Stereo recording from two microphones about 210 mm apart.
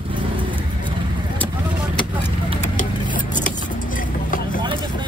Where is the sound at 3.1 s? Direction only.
40° left (ahead or behind).